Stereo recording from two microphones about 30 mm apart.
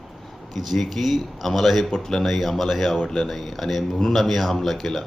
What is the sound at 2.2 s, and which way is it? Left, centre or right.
Speech, centre.